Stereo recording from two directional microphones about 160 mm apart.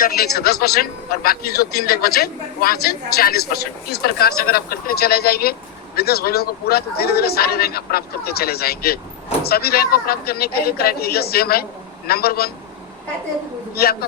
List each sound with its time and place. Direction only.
0.0 s a man's voice: 75° left (ahead or behind)
13.8 s a man's voice: 75° left (ahead or behind)